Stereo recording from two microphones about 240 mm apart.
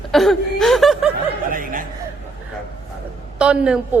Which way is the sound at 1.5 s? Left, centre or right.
Right.